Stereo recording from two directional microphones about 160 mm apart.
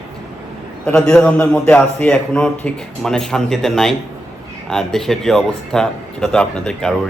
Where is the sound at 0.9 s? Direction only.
10° left (ahead or behind).